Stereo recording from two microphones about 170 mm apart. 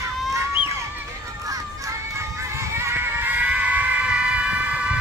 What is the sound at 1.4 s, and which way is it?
Music, 20° right (ahead or behind).